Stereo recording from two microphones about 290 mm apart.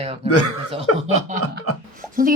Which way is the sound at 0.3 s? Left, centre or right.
Left.